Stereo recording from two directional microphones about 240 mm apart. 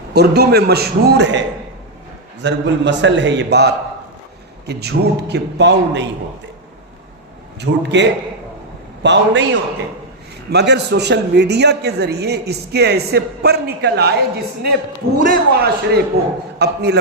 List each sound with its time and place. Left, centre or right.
0.1 s a man's voice: right
2.4 s a man's voice: right
7.6 s a man's voice: right
9.0 s a man's voice: right